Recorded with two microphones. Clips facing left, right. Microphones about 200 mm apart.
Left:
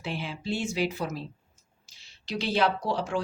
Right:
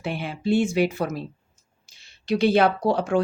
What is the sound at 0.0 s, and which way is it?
Speech, 55° right (ahead or behind).